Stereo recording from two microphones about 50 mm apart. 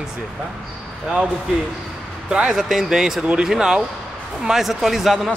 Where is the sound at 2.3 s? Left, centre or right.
Centre.